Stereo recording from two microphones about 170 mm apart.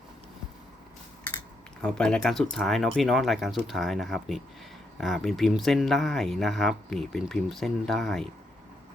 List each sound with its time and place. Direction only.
1.8 s speech: 5° left (ahead or behind)